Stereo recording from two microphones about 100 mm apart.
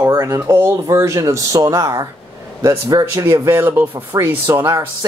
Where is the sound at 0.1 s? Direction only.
30° right (ahead or behind).